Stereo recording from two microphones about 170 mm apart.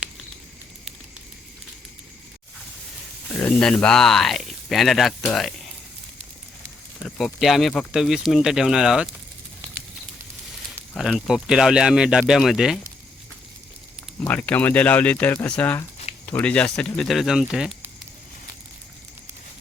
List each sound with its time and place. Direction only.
3.3 s speech: 5° left (ahead or behind)
7.2 s speech: centre (ahead or behind)
10.9 s speech: 5° right (ahead or behind)
14.2 s speech: 10° left (ahead or behind)